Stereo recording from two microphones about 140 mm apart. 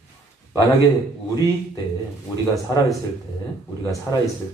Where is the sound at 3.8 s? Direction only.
25° left (ahead or behind).